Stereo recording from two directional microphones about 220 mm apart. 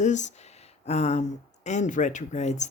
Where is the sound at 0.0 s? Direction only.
35° left (ahead or behind).